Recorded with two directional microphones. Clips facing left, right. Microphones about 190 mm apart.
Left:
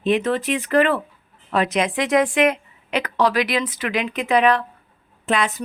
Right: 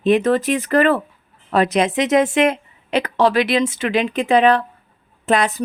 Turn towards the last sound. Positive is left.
turn(degrees=-40)  # may be behind; listen again after turning